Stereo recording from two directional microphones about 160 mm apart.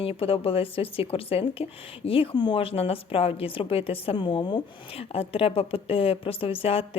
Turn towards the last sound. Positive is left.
turn(degrees=35)  # may be behind; listen again after turning